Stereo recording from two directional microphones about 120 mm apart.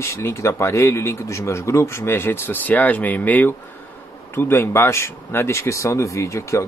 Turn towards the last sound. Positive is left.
turn(degrees=25)  # may be behind; listen again after turning